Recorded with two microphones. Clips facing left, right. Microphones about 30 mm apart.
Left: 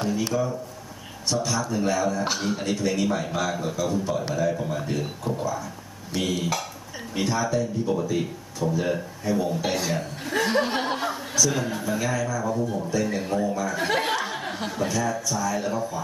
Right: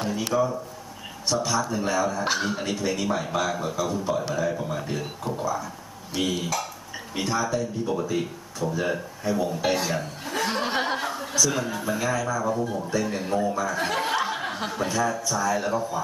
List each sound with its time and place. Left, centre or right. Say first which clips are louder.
0.0 s a man's voice: right 1 dB; centre
13.8 s chuckle: left 2 dB; centre
14.1 s a sound: right 2 dB; centre
14.9 s a man's voice: right 3 dB; centre